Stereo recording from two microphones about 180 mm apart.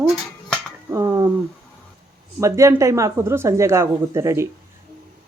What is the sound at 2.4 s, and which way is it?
Speech, 15° right (ahead or behind).